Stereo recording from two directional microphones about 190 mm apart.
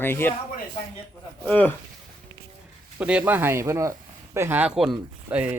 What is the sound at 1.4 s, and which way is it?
Speech, 10° left (ahead or behind).